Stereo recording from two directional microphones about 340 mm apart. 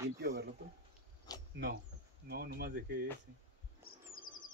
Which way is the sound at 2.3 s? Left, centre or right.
Right.